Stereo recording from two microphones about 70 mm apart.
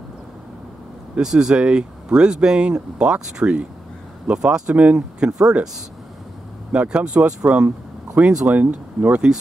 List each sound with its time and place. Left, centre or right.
1.1 s speech: centre
6.7 s speech: centre